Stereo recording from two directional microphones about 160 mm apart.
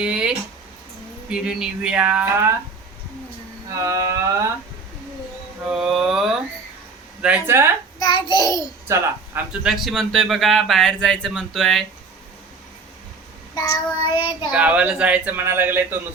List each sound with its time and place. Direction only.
0.0 s a sound: 5° right (ahead or behind)
1.3 s speech: 5° right (ahead or behind)
3.8 s a sound: 20° right (ahead or behind)
5.6 s a sound: 5° right (ahead or behind)
7.2 s speech: 10° right (ahead or behind)
7.9 s child singing: 25° left (ahead or behind)
8.9 s a man's voice: 10° right (ahead or behind)
14.1 s child singing: 30° left (ahead or behind)
14.5 s speech: 5° right (ahead or behind)